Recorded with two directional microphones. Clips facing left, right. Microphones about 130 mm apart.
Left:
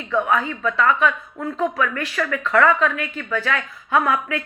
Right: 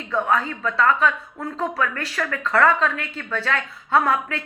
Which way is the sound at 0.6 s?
30° right (ahead or behind).